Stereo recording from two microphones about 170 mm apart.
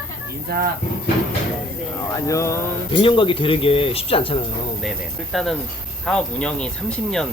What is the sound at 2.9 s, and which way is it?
Speech, 30° left (ahead or behind).